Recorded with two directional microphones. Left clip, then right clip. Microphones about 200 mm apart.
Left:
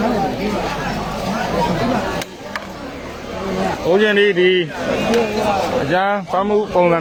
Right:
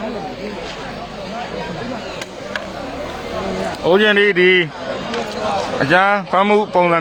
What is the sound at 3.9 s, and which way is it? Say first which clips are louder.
Speech: right 2 dB; 20° right (ahead or behind).